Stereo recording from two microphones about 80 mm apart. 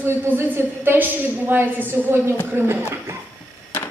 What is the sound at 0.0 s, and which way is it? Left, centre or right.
A woman's voice, right.